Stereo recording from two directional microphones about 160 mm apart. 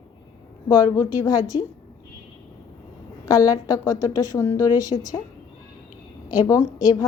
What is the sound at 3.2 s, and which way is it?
A woman's voice, 20° left (ahead or behind).